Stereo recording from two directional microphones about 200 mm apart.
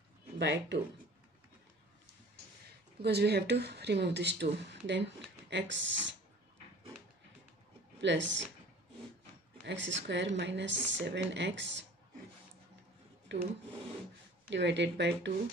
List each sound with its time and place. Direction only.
0.4 s speech: 60° right (ahead or behind)
3.0 s speech: 55° right (ahead or behind)
8.0 s speech: 65° right (ahead or behind)
9.7 s speech: 65° right (ahead or behind)
13.3 s speech: 65° right (ahead or behind)
14.5 s speech: 60° right (ahead or behind)